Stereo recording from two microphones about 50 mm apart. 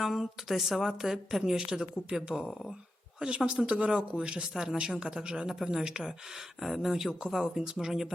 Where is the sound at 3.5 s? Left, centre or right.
Centre.